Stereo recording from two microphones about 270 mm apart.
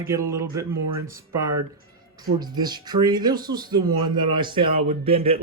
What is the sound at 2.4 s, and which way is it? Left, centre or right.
Speech, centre.